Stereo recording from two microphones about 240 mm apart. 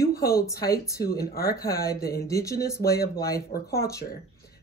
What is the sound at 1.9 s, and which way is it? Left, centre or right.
Speech, centre.